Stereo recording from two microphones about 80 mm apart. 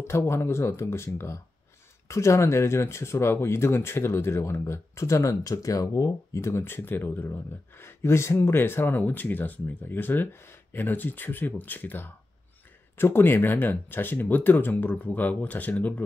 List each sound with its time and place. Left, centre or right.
0.0 s speech: left